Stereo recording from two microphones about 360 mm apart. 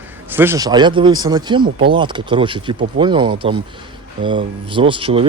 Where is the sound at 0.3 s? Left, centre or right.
Centre.